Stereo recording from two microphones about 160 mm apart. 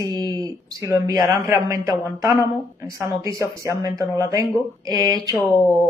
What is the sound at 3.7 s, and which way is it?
Speech, 20° right (ahead or behind).